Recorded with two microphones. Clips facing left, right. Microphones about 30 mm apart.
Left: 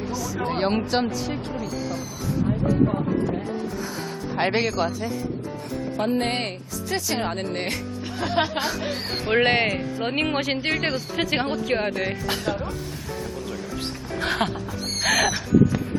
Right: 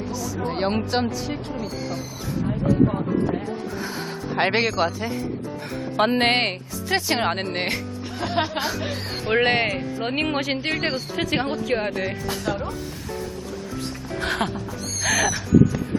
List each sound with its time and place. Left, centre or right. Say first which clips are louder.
0.3 s speech: left 1 dB; centre
2.5 s speech: right 2 dB; centre
3.8 s speech: right 1 dB; centre
6.1 s speech: right 4 dB; right
7.4 s speech: right 2 dB; centre
8.2 s speech: left 1 dB; centre
14.2 s speech: left 1 dB; centre
15.0 s a sound: left 1 dB; centre